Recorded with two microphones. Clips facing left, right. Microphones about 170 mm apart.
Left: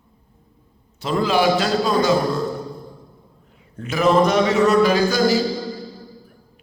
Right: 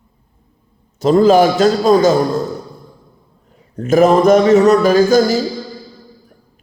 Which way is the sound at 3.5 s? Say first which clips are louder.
Right 13 dB; 45° right (ahead or behind).